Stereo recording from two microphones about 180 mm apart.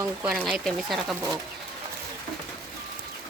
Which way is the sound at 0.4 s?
Centre (ahead or behind).